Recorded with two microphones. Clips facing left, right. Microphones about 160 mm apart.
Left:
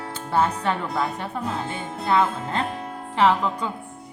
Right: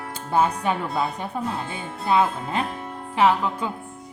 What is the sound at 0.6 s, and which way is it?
Speech, 15° right (ahead or behind).